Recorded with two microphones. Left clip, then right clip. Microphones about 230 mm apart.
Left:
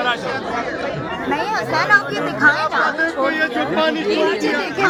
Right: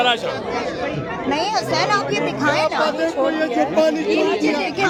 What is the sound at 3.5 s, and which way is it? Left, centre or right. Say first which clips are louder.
Speech: right 1 dB; right.